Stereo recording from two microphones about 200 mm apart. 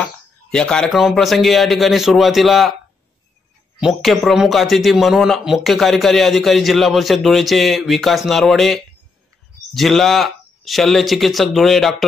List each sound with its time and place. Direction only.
0.5 s speech: 5° left (ahead or behind)
3.8 s speech: centre (ahead or behind)